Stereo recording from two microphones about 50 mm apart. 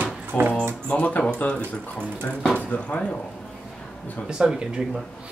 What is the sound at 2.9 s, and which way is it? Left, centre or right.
Speech, left.